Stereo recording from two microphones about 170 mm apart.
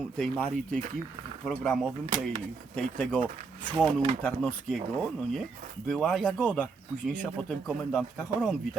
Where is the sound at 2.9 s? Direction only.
5° left (ahead or behind).